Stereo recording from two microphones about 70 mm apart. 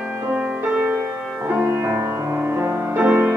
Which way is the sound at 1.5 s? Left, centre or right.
Right.